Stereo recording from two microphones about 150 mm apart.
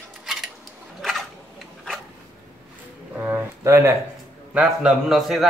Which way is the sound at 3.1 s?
15° right (ahead or behind).